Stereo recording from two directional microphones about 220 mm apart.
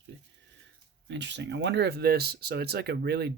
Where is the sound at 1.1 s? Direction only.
55° right (ahead or behind).